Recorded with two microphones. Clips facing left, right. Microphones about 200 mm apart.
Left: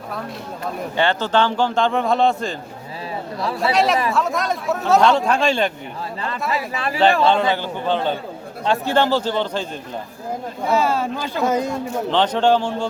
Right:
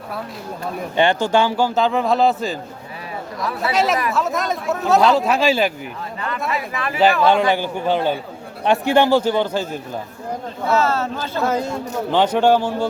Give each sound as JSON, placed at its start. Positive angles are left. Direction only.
{"t": 0.9, "sound": "a man's voice", "side_deg": -15}
{"t": 3.6, "sound": "a man's voice", "side_deg": 0}
{"t": 6.5, "sound": "speech", "side_deg": 30}
{"t": 7.5, "sound": "a man's voice", "side_deg": -10}
{"t": 10.7, "sound": "speech", "side_deg": 15}
{"t": 12.1, "sound": "a man's voice", "side_deg": -10}